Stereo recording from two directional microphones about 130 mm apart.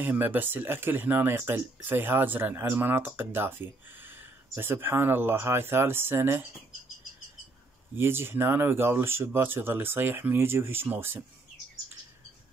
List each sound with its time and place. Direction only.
0.0 s speech: 15° right (ahead or behind)
7.9 s speech: 15° right (ahead or behind)